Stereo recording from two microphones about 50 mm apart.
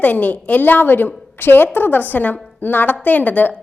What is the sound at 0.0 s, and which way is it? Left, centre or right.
A woman's voice, left.